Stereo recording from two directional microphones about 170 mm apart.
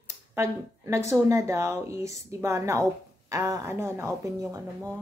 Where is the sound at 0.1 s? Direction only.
20° right (ahead or behind).